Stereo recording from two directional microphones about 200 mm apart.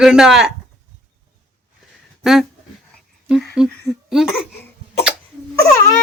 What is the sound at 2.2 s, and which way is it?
Speech, 5° right (ahead or behind).